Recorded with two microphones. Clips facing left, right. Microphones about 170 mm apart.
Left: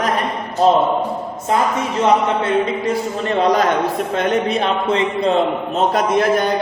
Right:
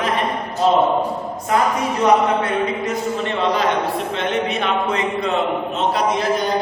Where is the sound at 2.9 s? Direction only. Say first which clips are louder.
Left 2 dB; 40° left (ahead or behind).